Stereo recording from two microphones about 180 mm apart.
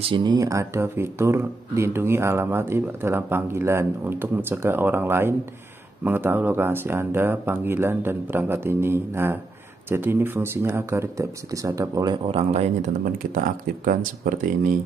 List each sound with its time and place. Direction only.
0.1 s speech: 25° right (ahead or behind)
12.5 s speech: 45° right (ahead or behind)